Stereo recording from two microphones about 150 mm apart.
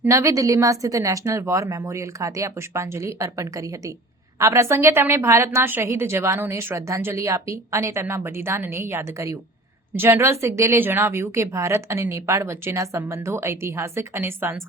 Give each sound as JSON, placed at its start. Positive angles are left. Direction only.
{"t": 0.0, "sound": "a woman's voice", "side_deg": -20}